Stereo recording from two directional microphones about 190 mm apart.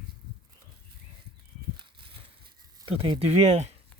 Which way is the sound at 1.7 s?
25° right (ahead or behind).